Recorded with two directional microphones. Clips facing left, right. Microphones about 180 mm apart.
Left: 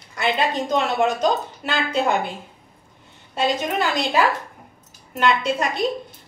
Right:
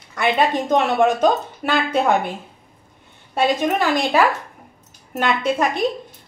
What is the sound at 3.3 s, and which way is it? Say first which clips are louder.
Speech: right 3 dB; 55° right (ahead or behind).